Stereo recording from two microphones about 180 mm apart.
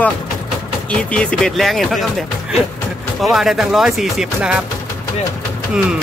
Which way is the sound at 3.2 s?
Centre (ahead or behind).